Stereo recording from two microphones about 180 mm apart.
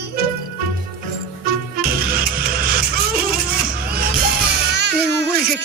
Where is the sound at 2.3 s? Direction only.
55° right (ahead or behind).